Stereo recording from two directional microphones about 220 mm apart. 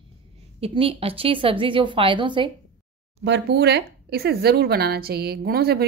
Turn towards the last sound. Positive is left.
turn(degrees=-45)  # may be behind; listen again after turning